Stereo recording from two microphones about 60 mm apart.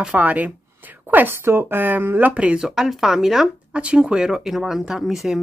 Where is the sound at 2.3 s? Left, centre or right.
Centre.